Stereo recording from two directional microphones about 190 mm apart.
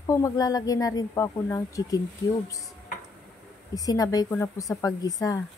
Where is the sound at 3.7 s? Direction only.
20° left (ahead or behind).